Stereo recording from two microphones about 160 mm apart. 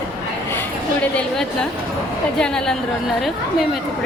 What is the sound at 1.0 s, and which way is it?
A woman's voice, 10° left (ahead or behind).